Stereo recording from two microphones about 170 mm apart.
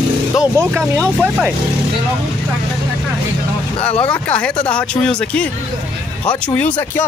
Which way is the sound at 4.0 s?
5° left (ahead or behind).